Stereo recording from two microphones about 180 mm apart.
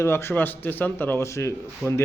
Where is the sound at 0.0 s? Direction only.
15° left (ahead or behind).